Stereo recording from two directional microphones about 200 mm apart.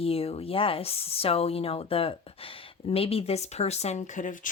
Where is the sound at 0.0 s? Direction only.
30° left (ahead or behind).